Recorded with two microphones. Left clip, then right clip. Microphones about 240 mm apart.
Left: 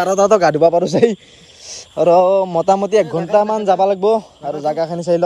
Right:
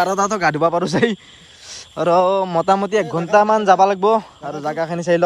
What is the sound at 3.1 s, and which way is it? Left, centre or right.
A man's voice, centre.